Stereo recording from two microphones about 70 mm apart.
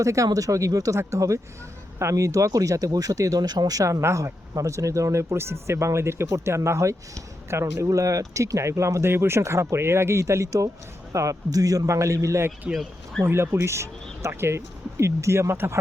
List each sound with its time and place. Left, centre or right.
0.0 s speech: right
13.2 s speech: right